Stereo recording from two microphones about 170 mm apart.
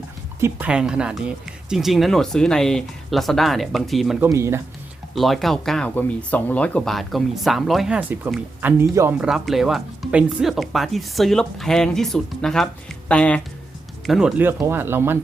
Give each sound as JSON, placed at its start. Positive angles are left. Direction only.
{"t": 0.3, "sound": "speech", "side_deg": -15}
{"t": 4.2, "sound": "speech", "side_deg": -15}
{"t": 5.1, "sound": "speech", "side_deg": 0}
{"t": 9.3, "sound": "speech", "side_deg": 0}
{"t": 14.1, "sound": "speech", "side_deg": -5}